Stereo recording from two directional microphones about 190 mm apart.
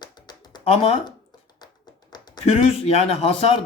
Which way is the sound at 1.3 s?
20° left (ahead or behind).